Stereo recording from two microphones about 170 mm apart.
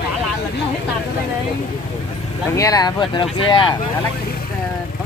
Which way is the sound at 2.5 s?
20° left (ahead or behind).